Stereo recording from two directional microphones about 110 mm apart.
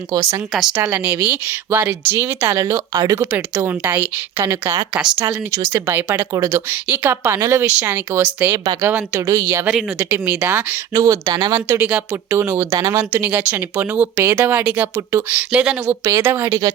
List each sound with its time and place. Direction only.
0.1 s speech: 35° right (ahead or behind)
0.8 s speech: 15° right (ahead or behind); by 3.2 s 30° right (ahead or behind)
3.2 s speech: 15° right (ahead or behind)
4.9 s speech: 5° right (ahead or behind)
5.5 s speech: 30° right (ahead or behind)
5.8 s speech: 15° right (ahead or behind)
6.3 s speech: 30° right (ahead or behind)
6.7 s speech: 15° right (ahead or behind)
8.5 s speech: 35° right (ahead or behind)
8.8 s speech: 20° right (ahead or behind)
10.3 s speech: 15° right (ahead or behind)
10.9 s speech: 30° right (ahead or behind)
11.8 s speech: 10° right (ahead or behind)